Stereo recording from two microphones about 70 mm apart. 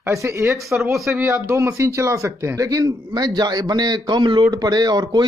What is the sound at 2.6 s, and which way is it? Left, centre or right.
Speech, right.